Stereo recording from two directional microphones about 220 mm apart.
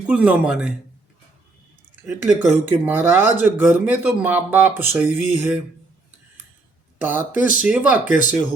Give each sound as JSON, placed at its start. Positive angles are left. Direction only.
{"t": 0.1, "sound": "speech", "side_deg": -5}
{"t": 2.2, "sound": "speech", "side_deg": -10}
{"t": 7.0, "sound": "speech", "side_deg": -10}
{"t": 8.0, "sound": "speech", "side_deg": 35}